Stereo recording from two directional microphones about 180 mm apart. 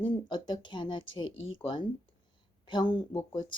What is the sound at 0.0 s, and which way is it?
A woman's voice, 25° left (ahead or behind).